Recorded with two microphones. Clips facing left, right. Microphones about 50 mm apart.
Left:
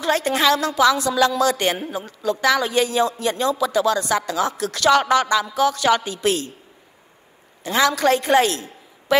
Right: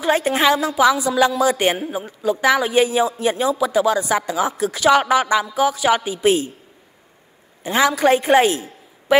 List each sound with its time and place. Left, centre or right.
0.0 s speech: centre
7.6 s a woman's voice: centre